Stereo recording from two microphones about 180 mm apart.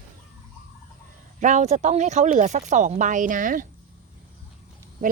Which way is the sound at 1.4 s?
40° right (ahead or behind).